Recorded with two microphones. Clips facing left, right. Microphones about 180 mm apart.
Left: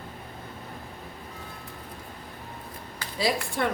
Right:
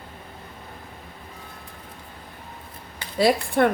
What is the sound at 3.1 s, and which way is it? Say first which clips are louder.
Speech: right 8 dB; 60° right (ahead or behind).